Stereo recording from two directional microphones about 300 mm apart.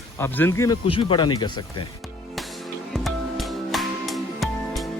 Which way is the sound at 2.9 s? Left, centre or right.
Centre.